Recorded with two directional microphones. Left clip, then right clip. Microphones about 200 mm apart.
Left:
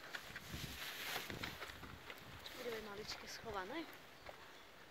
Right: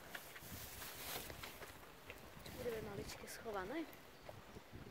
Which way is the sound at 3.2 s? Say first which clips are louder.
Right 3 dB; 40° right (ahead or behind).